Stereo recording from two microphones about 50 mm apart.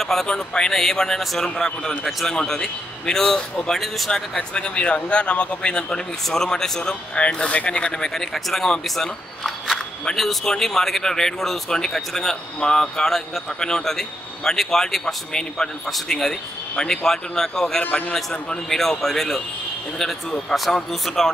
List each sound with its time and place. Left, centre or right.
0.0 s speech: centre; by 5.6 s left
5.6 s speech: centre
20.9 s speech: centre